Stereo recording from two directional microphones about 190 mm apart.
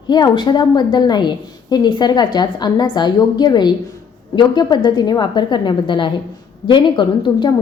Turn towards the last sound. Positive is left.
turn(degrees=25)  # may be behind; listen again after turning